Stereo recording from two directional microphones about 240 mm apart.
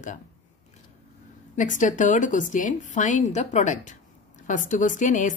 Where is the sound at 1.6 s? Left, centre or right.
Left.